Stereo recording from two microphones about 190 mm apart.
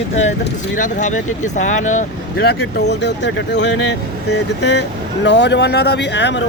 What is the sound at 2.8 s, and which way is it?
Speech, 65° left (ahead or behind).